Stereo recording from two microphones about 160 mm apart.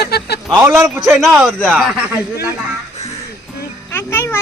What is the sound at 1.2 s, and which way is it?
Speech, centre (ahead or behind).